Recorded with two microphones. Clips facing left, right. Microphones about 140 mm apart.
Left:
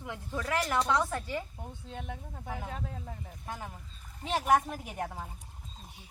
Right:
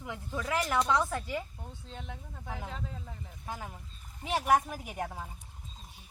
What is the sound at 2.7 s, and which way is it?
Speech, 45° left (ahead or behind).